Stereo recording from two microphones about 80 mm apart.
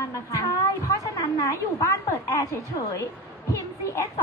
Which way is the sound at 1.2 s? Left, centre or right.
Left.